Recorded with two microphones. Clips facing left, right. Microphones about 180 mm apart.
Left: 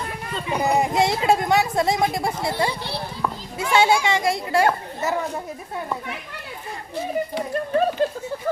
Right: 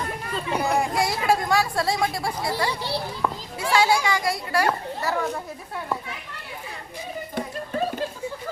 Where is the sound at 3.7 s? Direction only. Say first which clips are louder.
Left 2 dB; 25° left (ahead or behind).